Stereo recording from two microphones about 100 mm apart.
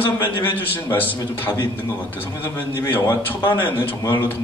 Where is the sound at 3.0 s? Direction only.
20° left (ahead or behind).